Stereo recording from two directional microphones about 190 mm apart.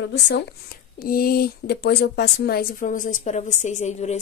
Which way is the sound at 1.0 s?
50° left (ahead or behind).